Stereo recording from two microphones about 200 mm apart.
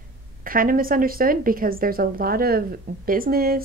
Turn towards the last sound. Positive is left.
turn(degrees=-50)  # may be behind; listen again after turning